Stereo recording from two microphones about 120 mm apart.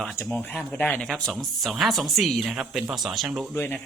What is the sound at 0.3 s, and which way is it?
Speech, 15° left (ahead or behind).